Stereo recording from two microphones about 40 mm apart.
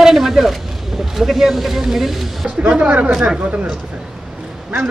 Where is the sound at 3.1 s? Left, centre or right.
Right.